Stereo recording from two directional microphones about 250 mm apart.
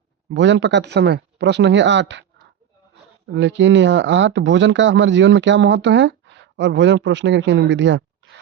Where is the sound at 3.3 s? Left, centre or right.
Right.